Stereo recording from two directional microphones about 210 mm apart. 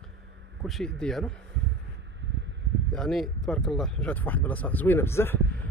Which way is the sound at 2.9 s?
Centre (ahead or behind).